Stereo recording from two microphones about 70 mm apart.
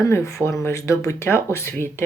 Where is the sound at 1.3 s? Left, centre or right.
Left.